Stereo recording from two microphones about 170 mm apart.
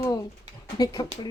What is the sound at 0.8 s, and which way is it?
Speech, 25° left (ahead or behind).